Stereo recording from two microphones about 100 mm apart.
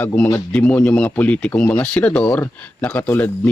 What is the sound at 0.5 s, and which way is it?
Speech, 10° left (ahead or behind).